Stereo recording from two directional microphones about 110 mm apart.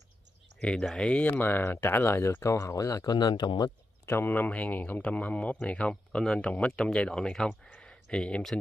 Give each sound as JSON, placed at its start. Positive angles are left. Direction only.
{"t": 0.6, "sound": "speech", "side_deg": 10}
{"t": 4.0, "sound": "speech", "side_deg": 20}